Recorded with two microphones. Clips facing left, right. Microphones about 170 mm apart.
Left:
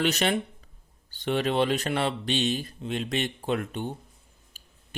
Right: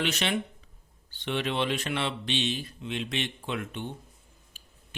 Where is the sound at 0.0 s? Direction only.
40° left (ahead or behind).